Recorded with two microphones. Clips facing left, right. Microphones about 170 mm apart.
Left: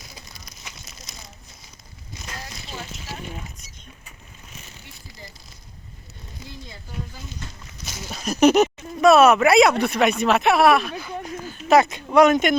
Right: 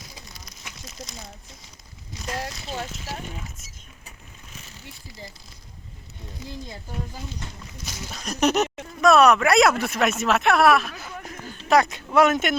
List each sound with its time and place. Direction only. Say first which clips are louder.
8.1 s speech: left 6 dB; 5° left (ahead or behind)
10.9 s a sound: left 6 dB; 30° left (ahead or behind)
11.7 s speech: left 3 dB; centre (ahead or behind)